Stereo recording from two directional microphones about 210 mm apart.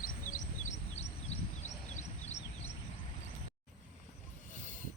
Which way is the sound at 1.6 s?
35° left (ahead or behind).